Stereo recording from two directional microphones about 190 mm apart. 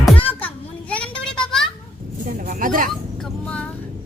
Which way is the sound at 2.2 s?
45° right (ahead or behind).